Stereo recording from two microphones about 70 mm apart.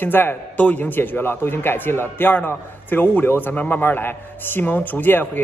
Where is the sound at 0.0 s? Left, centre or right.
Left.